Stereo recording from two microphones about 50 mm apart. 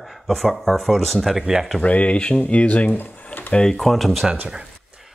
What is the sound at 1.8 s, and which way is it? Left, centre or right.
Speech, left.